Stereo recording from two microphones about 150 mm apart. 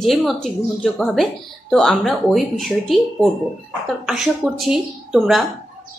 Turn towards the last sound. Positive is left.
turn(degrees=0)  # may be behind; listen again after turning